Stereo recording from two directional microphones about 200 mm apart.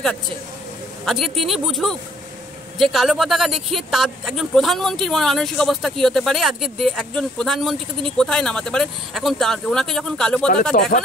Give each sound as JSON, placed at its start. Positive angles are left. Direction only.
{"t": 1.0, "sound": "speech", "side_deg": 0}
{"t": 10.4, "sound": "speech", "side_deg": 35}